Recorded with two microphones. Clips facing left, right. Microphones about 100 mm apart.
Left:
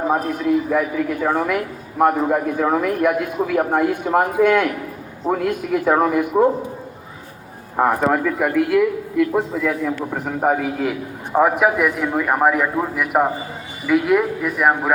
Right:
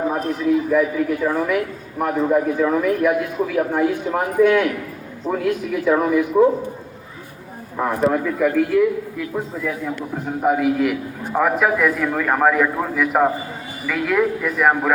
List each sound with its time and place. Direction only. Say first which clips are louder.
0.3 s a man's voice: right 1 dB; 55° left (ahead or behind)
7.8 s a man's voice: left 2 dB; 65° left (ahead or behind); by 10.3 s 85° left
10.4 s a man's voice: right 2 dB; 40° left (ahead or behind)
11.3 s a man's voice: left 2 dB; 20° left (ahead or behind)